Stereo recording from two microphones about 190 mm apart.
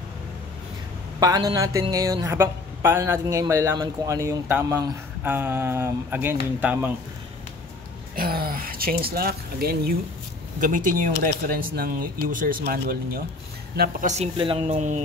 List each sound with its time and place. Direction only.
1.2 s speech: 20° right (ahead or behind)
8.2 s speech: 50° right (ahead or behind)
14.0 s speech: 35° right (ahead or behind)